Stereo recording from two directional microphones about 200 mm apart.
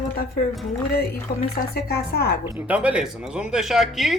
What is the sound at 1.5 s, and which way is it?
Speech, 50° left (ahead or behind).